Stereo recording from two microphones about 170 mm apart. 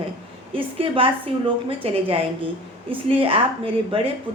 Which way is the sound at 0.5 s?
30° right (ahead or behind).